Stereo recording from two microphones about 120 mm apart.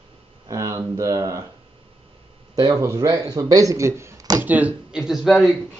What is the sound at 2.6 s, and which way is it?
Speech, 30° right (ahead or behind).